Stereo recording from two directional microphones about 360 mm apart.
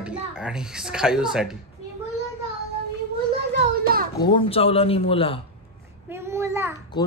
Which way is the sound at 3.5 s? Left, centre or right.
Right.